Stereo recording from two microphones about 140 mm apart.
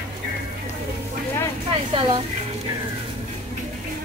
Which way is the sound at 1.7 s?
35° right (ahead or behind).